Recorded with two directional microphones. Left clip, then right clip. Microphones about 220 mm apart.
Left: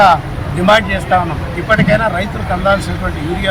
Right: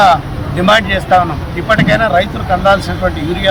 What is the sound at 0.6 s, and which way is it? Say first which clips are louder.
Speech: right 1 dB; 10° right (ahead or behind).